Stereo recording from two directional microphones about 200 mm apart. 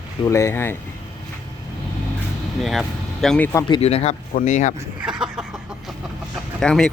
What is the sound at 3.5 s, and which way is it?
Speech, 25° left (ahead or behind).